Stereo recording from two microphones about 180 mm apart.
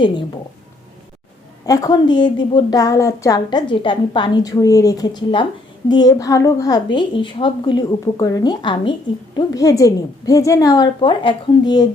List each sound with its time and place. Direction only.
1.6 s speech: 20° left (ahead or behind)